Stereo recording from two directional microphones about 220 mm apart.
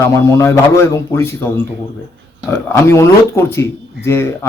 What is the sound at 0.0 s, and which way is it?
A man's voice, 15° left (ahead or behind).